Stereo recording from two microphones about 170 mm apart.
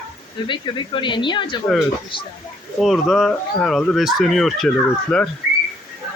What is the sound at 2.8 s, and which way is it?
Speech, centre (ahead or behind).